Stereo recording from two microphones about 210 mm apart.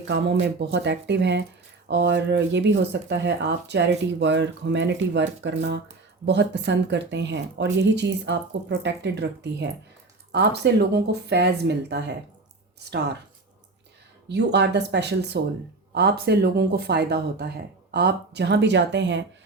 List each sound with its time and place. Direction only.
0.1 s speech: 55° right (ahead or behind)
14.3 s speech: 55° right (ahead or behind)